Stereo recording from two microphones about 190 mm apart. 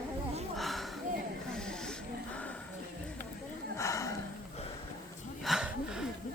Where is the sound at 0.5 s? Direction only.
Centre (ahead or behind).